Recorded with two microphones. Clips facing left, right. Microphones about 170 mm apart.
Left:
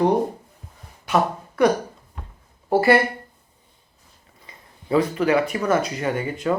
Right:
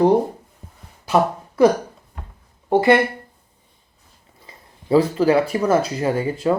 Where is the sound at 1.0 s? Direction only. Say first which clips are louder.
Right 3 dB; 30° right (ahead or behind).